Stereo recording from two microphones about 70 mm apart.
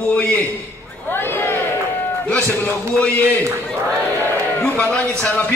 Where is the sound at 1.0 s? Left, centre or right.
Left.